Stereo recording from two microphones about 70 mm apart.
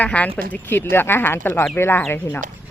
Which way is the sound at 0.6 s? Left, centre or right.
Left.